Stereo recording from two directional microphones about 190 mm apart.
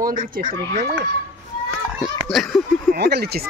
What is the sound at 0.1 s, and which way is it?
Speech, 45° right (ahead or behind).